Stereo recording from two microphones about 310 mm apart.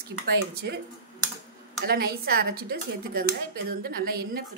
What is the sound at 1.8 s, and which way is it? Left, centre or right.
A woman's voice, right.